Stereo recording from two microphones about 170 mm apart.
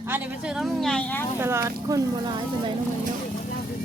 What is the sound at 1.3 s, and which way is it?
Speech, 15° right (ahead or behind).